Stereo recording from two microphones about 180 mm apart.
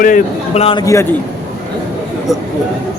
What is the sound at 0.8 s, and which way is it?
Speech, 15° left (ahead or behind).